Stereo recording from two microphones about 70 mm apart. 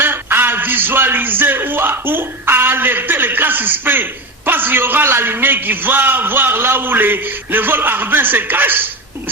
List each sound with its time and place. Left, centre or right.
0.0 s a man's voice: right